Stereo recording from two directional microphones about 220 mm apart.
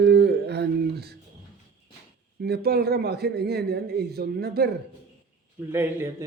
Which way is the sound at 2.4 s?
45° right (ahead or behind).